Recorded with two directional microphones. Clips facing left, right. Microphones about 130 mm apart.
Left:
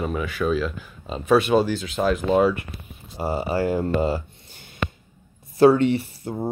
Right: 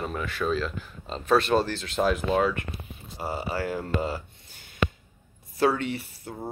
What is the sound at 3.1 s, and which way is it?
Speech, 25° left (ahead or behind).